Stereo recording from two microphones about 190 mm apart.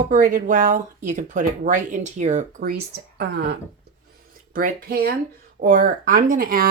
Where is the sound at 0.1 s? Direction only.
45° right (ahead or behind).